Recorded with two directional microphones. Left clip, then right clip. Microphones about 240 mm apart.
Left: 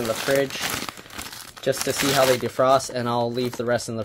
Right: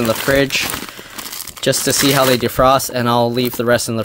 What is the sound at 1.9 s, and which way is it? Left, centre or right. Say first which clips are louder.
Speech: right 5 dB; right.